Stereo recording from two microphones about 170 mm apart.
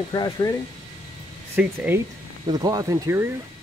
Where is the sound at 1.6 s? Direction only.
10° right (ahead or behind).